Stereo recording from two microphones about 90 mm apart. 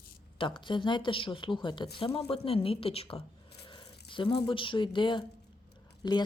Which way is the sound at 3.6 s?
65° left (ahead or behind).